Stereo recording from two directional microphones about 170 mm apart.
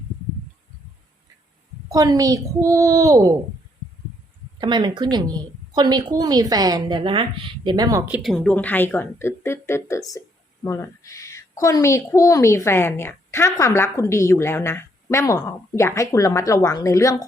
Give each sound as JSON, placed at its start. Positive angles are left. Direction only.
{"t": 1.9, "sound": "a woman's voice", "side_deg": -20}
{"t": 4.6, "sound": "a woman's voice", "side_deg": -25}
{"t": 8.2, "sound": "a woman's voice", "side_deg": 5}
{"t": 10.1, "sound": "whispering", "side_deg": 20}
{"t": 11.6, "sound": "a woman's voice", "side_deg": 20}